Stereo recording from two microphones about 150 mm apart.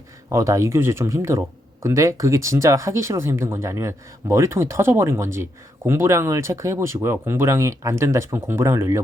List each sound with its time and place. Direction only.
0.3 s speech: 20° right (ahead or behind)